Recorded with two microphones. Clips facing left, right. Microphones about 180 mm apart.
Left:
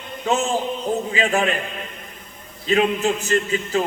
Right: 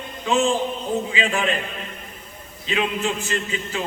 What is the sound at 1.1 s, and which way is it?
Speech, 40° left (ahead or behind).